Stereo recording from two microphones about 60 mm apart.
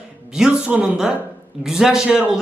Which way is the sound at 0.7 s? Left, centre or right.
Right.